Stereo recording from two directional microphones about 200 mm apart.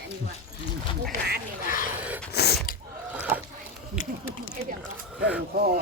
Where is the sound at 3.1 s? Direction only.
5° right (ahead or behind).